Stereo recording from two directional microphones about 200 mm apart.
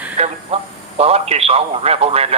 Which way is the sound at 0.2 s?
30° right (ahead or behind).